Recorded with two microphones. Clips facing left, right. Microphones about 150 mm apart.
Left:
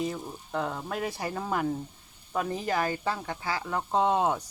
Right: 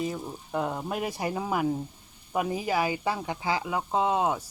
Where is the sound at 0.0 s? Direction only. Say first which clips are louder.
Right 1 dB; 5° right (ahead or behind).